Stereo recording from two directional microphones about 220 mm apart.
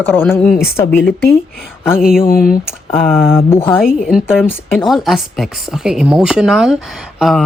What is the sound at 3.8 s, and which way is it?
Speech, 5° right (ahead or behind).